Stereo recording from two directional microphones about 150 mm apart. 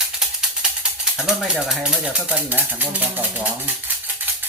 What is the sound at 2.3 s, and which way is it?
Speech, 10° right (ahead or behind).